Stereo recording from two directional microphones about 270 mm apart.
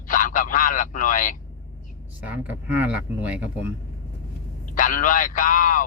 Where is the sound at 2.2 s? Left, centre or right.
Centre.